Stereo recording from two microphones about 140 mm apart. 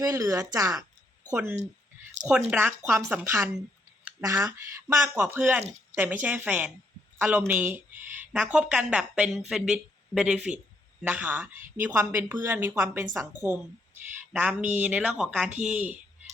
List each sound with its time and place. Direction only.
0.0 s speech: 25° right (ahead or behind)
1.3 s speech: 15° right (ahead or behind)
14.7 s speech: 10° right (ahead or behind)